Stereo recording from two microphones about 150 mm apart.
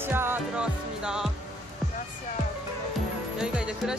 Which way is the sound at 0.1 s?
15° right (ahead or behind).